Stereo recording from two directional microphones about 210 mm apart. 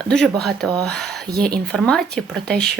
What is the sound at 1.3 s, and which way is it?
Speech, 45° right (ahead or behind).